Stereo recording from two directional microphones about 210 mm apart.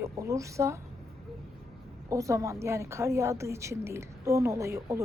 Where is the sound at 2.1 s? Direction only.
15° right (ahead or behind).